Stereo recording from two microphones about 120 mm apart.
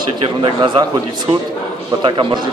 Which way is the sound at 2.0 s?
40° right (ahead or behind).